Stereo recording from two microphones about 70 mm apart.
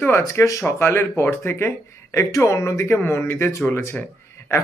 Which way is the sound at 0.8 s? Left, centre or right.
Left.